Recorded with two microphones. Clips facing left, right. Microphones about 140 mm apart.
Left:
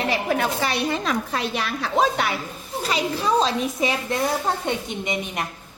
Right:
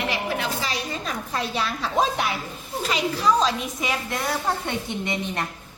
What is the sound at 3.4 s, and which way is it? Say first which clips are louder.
Speech: left 3 dB; 30° left (ahead or behind).